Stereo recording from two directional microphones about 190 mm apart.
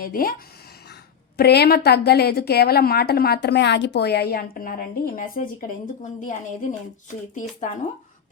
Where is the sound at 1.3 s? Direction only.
60° left (ahead or behind).